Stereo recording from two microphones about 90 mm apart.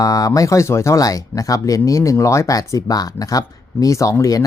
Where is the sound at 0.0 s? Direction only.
40° left (ahead or behind).